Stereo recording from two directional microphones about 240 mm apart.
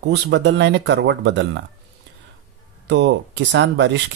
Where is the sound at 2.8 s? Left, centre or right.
Right.